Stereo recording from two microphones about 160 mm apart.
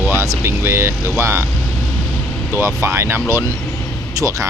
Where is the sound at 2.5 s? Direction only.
15° right (ahead or behind).